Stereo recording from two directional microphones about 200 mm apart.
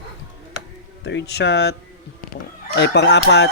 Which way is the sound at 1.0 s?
55° left (ahead or behind).